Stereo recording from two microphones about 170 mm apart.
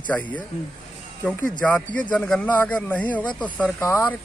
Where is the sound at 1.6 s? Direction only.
10° left (ahead or behind).